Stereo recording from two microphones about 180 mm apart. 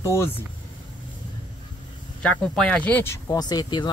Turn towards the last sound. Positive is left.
turn(degrees=25)  # may be behind; listen again after turning